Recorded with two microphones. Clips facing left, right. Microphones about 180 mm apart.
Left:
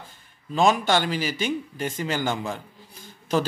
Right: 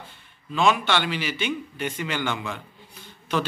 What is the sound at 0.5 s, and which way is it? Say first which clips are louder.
Speech: left 2 dB; 40° left (ahead or behind).